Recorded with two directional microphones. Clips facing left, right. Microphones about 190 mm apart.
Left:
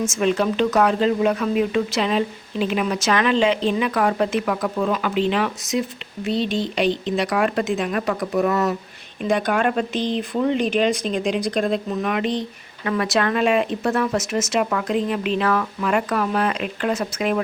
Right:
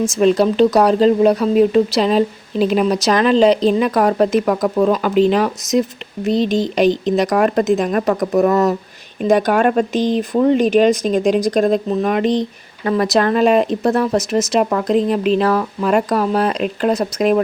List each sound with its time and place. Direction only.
0.0 s speech: 35° right (ahead or behind)